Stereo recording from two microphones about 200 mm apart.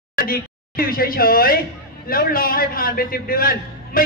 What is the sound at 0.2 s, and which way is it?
A man's voice, 45° left (ahead or behind).